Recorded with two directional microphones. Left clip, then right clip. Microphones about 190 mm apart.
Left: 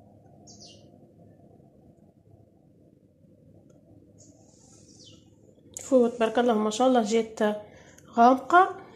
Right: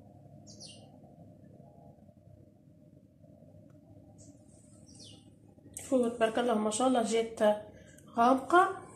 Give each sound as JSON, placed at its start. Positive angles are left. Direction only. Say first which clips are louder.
{"t": 5.9, "sound": "speech", "louder": "left 7 dB", "side_deg": 50}